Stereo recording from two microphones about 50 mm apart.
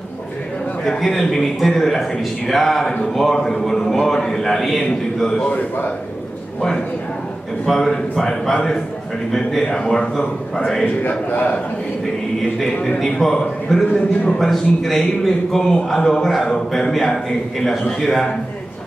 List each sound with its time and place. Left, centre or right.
0.8 s a man's voice: centre
5.5 s a man's voice: left
7.6 s a man's voice: centre
11.1 s a man's voice: left
12.5 s a man's voice: centre